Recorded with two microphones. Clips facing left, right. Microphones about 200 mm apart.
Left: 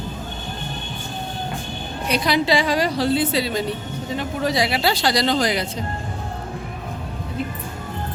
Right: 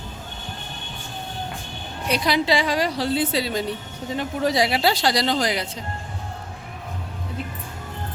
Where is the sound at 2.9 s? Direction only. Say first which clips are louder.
Left 3 dB; 40° right (ahead or behind).